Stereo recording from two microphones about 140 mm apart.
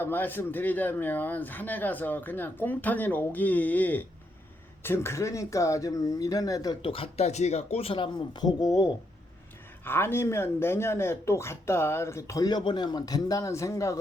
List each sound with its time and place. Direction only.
0.0 s speech: 15° left (ahead or behind)
6.8 s speech: 40° left (ahead or behind); by 14.0 s 20° left (ahead or behind)